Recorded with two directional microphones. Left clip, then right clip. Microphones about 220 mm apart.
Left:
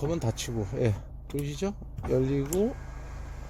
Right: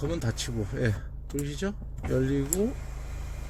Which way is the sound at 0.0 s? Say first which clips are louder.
Left 1 dB; 15° left (ahead or behind).